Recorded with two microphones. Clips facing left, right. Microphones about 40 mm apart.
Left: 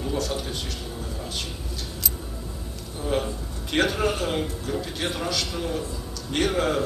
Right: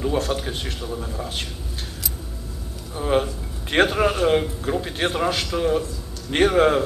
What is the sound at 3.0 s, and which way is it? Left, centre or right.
Speech, right.